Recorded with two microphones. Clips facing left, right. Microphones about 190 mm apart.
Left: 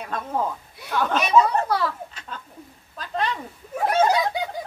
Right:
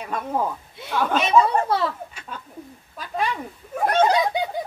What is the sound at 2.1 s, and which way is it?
Bird, 10° right (ahead or behind).